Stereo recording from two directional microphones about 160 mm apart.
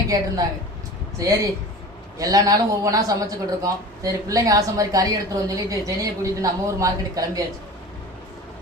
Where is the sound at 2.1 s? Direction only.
20° right (ahead or behind).